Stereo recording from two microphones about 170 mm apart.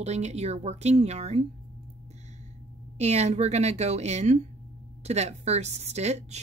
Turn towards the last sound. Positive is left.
turn(degrees=-40)  # may be behind; listen again after turning